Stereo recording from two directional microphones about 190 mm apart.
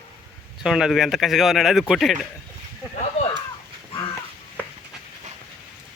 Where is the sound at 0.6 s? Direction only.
Centre (ahead or behind).